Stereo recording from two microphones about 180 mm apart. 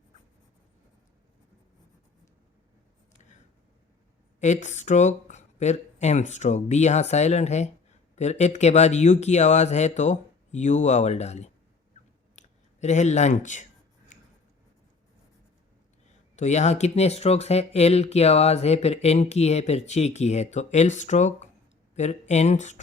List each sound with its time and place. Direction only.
4.4 s speech: 40° left (ahead or behind)
14.1 s writing: 45° left (ahead or behind)
16.3 s speech: 40° left (ahead or behind)